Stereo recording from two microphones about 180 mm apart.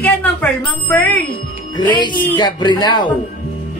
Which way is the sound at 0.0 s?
10° left (ahead or behind).